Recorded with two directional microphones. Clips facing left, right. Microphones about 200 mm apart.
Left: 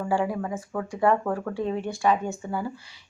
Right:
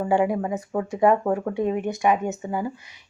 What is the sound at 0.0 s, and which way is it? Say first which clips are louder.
Speech: right 4 dB; 20° right (ahead or behind).